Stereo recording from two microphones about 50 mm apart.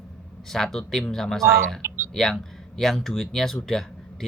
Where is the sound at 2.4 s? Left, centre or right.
Centre.